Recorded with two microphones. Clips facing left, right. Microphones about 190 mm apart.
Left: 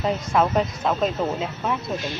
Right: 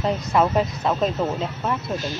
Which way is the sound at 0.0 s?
Centre (ahead or behind).